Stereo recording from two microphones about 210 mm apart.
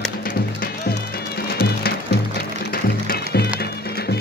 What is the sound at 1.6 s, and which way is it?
Music, 45° left (ahead or behind).